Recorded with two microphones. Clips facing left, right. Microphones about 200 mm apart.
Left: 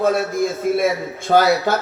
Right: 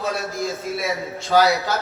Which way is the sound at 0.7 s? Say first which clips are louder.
Left 7 dB; 55° left (ahead or behind).